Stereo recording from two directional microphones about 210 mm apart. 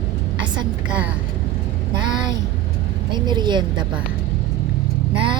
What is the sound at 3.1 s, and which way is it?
Speech, 20° right (ahead or behind).